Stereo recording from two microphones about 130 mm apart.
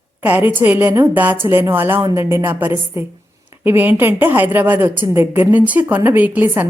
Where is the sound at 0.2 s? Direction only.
15° right (ahead or behind).